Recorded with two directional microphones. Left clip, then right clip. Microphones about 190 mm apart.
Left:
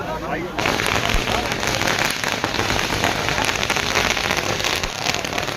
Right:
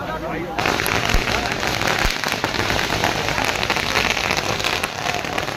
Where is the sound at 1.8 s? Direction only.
25° right (ahead or behind).